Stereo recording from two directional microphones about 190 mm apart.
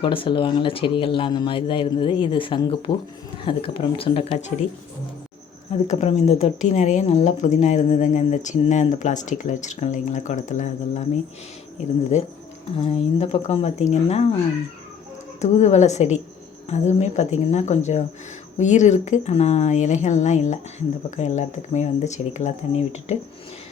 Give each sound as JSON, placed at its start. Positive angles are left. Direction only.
{"t": 0.0, "sound": "speech", "side_deg": 25}
{"t": 5.7, "sound": "a woman's voice", "side_deg": 35}
{"t": 12.7, "sound": "a woman's voice", "side_deg": 30}
{"t": 15.4, "sound": "a woman's voice", "side_deg": 35}